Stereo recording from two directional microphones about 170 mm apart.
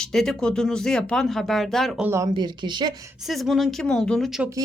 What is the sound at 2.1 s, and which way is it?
Speech, 20° right (ahead or behind).